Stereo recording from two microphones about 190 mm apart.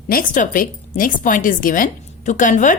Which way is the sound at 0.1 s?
45° left (ahead or behind).